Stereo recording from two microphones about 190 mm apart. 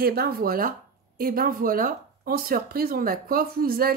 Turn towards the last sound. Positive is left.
turn(degrees=-50)  # may be behind; listen again after turning